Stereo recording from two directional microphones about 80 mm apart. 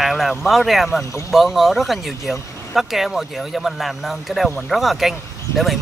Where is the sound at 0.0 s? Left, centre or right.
Centre.